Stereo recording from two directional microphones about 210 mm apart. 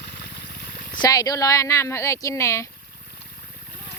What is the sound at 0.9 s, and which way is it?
Speech, 15° left (ahead or behind).